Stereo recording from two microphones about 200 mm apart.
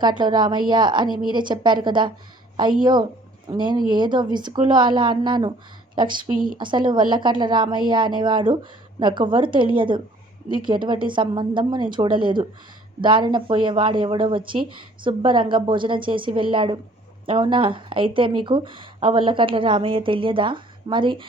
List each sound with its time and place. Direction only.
0.2 s speech: 20° right (ahead or behind)
1.0 s a woman's voice: 45° right (ahead or behind)
1.3 s speech: 25° right (ahead or behind)
6.3 s a woman's voice: 45° right (ahead or behind)
6.6 s speech: 25° right (ahead or behind)